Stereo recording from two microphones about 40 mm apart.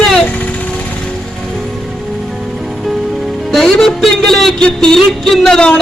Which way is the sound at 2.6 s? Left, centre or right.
Centre.